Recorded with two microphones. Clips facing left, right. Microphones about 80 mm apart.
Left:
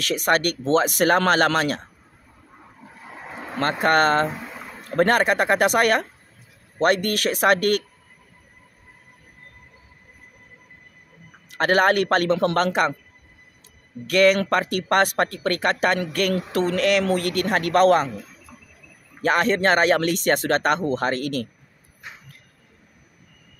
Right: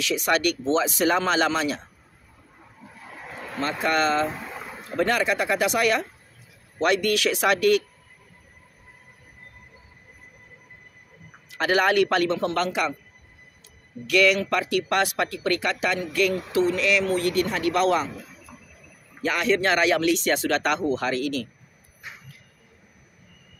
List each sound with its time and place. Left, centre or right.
0.0 s speech: left
3.2 s a sound: left
3.8 s speech: left
4.3 s a sound: centre
4.9 s speech: left
11.5 s speech: left
14.0 s speech: left
19.2 s speech: left